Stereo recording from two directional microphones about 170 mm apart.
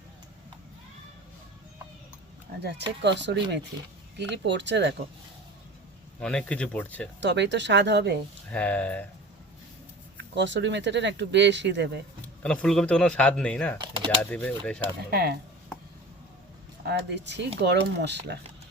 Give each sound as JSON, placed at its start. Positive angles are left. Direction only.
{"t": 2.6, "sound": "speech", "side_deg": -85}
{"t": 6.1, "sound": "speech", "side_deg": 5}
{"t": 7.2, "sound": "speech", "side_deg": -90}
{"t": 8.5, "sound": "speech", "side_deg": 10}
{"t": 10.3, "sound": "speech", "side_deg": -90}
{"t": 12.4, "sound": "speech", "side_deg": 5}
{"t": 13.8, "sound": "typing", "side_deg": -30}
{"t": 14.2, "sound": "speech", "side_deg": 10}
{"t": 15.1, "sound": "speech", "side_deg": -65}
{"t": 16.8, "sound": "speech", "side_deg": -80}